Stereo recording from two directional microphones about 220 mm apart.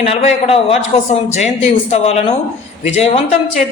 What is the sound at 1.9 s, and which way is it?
Speech, 30° left (ahead or behind).